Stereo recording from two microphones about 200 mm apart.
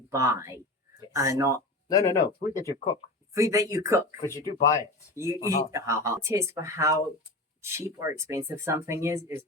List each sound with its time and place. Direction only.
0.1 s speech: 15° right (ahead or behind)
1.9 s speech: 15° left (ahead or behind)
3.3 s speech: 15° right (ahead or behind)